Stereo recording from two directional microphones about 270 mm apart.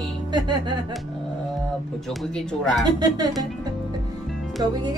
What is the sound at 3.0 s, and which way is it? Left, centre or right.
Music, centre.